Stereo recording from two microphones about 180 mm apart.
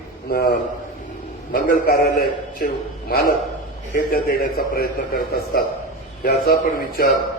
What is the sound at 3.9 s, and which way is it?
A man's voice, 55° left (ahead or behind).